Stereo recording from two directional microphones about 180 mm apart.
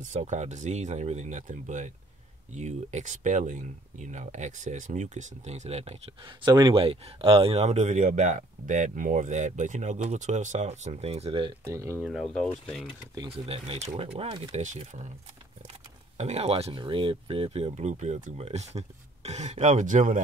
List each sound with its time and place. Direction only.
0.0 s speech: 40° right (ahead or behind)
11.6 s speech: 15° right (ahead or behind)
12.0 s speech: centre (ahead or behind)
13.1 s speech: 30° right (ahead or behind)
16.2 s speech: 35° right (ahead or behind)